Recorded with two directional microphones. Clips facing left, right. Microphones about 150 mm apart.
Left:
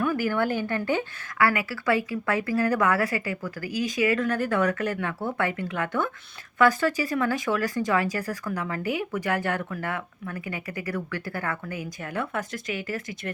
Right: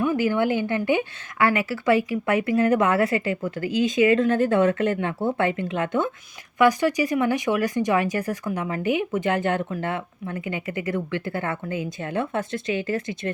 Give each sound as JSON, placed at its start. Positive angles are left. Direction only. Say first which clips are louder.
{"t": 0.0, "sound": "speech", "louder": "right 3 dB", "side_deg": -20}